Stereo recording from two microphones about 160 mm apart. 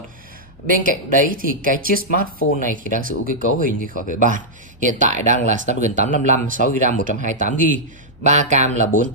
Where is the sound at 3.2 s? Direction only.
60° right (ahead or behind).